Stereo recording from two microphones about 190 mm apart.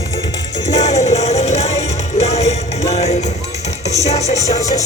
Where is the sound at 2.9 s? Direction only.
35° left (ahead or behind).